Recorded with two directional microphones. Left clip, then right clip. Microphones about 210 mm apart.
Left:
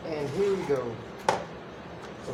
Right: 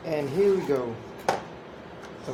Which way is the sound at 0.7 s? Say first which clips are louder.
Right 2 dB; 55° right (ahead or behind).